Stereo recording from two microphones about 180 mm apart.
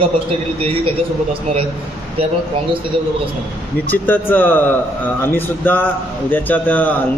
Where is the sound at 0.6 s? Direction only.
30° right (ahead or behind).